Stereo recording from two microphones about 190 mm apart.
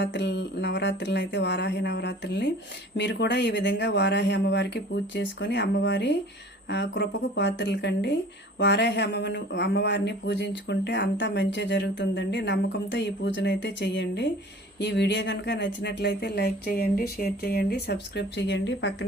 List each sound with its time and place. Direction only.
0.0 s speech: 65° left (ahead or behind)